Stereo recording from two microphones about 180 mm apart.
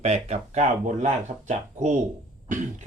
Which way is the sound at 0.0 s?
35° right (ahead or behind).